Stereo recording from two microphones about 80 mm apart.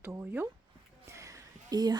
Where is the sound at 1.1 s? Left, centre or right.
Right.